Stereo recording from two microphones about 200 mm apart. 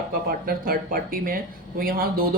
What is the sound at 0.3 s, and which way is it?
A woman's voice, 45° right (ahead or behind).